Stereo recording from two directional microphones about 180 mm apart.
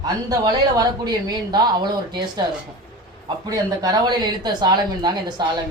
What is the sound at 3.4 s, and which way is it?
A woman's voice, 20° right (ahead or behind).